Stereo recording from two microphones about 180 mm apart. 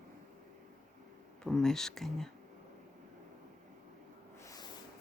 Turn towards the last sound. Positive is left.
turn(degrees=20)  # may be behind; listen again after turning